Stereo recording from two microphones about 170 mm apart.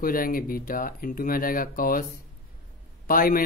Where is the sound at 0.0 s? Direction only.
55° left (ahead or behind).